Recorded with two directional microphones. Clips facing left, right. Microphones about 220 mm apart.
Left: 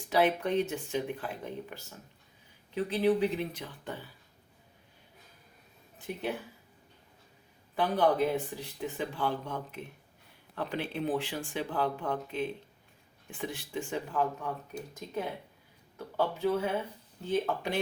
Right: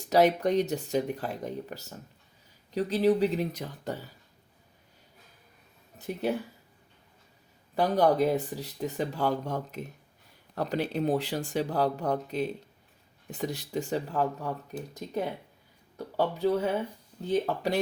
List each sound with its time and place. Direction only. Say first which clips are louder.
0.0 s speech: right 5 dB; 40° right (ahead or behind)
6.0 s speech: right 5 dB; 40° right (ahead or behind)
7.8 s speech: right 3 dB; 40° right (ahead or behind)
16.0 s speech: right 3 dB; 40° right (ahead or behind)